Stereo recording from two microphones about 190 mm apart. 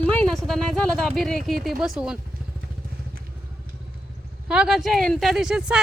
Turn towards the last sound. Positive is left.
turn(degrees=-5)  # may be behind; listen again after turning